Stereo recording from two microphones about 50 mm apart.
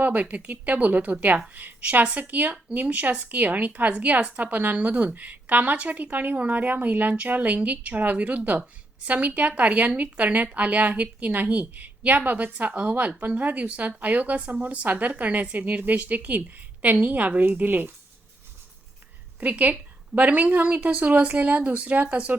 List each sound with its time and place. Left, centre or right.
0.0 s a woman's voice: right
19.4 s a woman's voice: right